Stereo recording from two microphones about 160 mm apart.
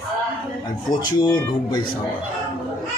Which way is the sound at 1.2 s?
25° left (ahead or behind).